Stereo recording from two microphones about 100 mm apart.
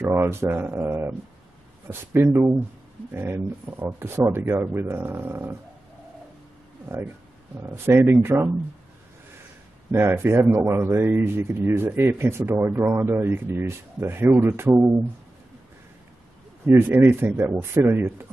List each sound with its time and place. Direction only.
0.1 s speech: 25° right (ahead or behind)
7.5 s speech: 25° right (ahead or behind)
9.8 s speech: 25° right (ahead or behind)
16.6 s speech: 25° right (ahead or behind)